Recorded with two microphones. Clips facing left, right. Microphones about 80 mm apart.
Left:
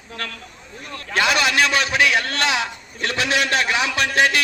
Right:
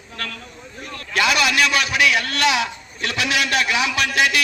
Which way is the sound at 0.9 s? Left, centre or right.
Left.